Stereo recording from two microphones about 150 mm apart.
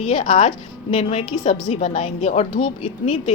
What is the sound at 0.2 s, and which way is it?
A woman's voice, 55° left (ahead or behind).